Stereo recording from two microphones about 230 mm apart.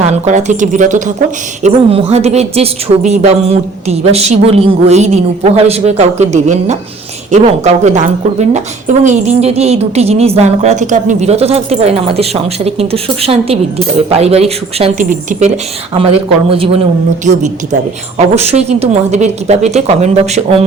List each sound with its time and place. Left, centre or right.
0.3 s a woman's voice: right